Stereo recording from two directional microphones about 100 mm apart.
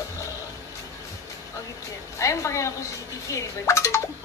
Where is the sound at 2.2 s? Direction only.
30° left (ahead or behind).